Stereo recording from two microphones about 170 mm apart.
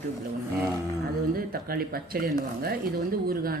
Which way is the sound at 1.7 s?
60° right (ahead or behind).